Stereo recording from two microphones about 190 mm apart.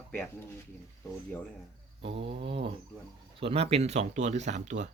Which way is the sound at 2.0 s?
30° right (ahead or behind).